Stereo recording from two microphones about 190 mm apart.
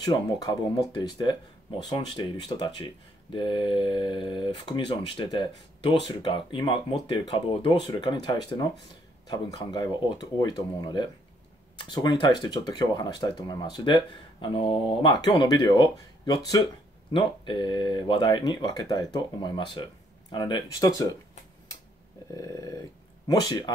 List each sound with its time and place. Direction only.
0.0 s speech: 20° left (ahead or behind)
9.8 s speech: 25° left (ahead or behind)
22.3 s a sound: 15° left (ahead or behind)
23.2 s speech: 20° left (ahead or behind)